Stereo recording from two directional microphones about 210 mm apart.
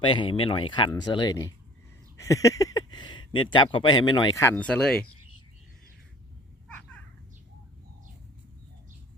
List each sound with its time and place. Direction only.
0.0 s speech: 25° left (ahead or behind)
2.2 s a sound: 15° left (ahead or behind)
3.5 s speech: 25° left (ahead or behind); by 5.0 s 5° left (ahead or behind)